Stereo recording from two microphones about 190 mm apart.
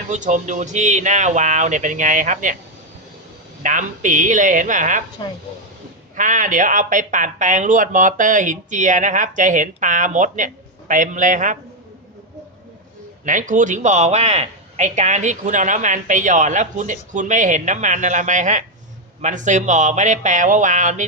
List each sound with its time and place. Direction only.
0.1 s speech: 40° right (ahead or behind)
3.6 s speech: 45° right (ahead or behind)
6.1 s speech: 45° right (ahead or behind)
13.2 s speech: 40° right (ahead or behind)